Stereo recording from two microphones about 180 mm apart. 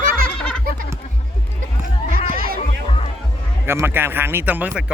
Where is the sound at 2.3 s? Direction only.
55° right (ahead or behind).